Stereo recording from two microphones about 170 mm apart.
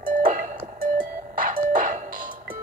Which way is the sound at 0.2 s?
50° right (ahead or behind).